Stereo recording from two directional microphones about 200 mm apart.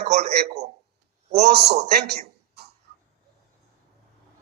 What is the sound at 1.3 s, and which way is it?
Speech, 55° right (ahead or behind).